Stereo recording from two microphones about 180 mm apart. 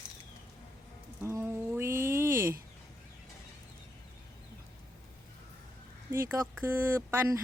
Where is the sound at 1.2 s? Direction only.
15° right (ahead or behind).